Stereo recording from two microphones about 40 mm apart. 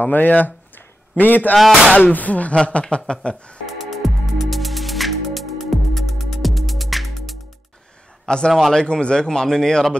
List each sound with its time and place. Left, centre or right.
0.0 s a man's voice: left
1.6 s speech: centre
2.0 s speech: left
2.5 s speech: left
3.6 s music: centre
8.3 s speech: centre
8.5 s speech: centre
8.8 s speech: left